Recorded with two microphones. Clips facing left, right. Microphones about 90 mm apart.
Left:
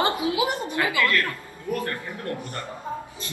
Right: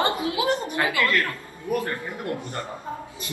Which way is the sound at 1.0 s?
20° right (ahead or behind).